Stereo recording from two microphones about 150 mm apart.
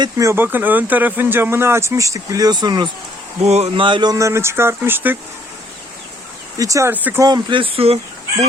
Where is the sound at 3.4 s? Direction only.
45° right (ahead or behind).